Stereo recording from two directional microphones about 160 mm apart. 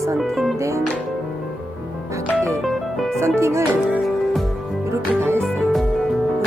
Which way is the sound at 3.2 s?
15° right (ahead or behind).